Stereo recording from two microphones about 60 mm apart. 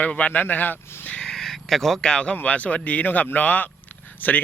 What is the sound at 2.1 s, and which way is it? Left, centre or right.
A man's voice, centre.